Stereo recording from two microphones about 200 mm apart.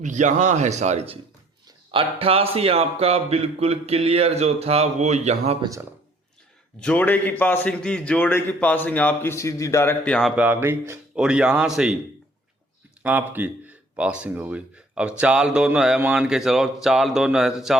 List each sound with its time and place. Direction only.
0.0 s speech: 35° right (ahead or behind)
6.7 s a man's voice: 5° left (ahead or behind)
13.0 s speech: 10° right (ahead or behind)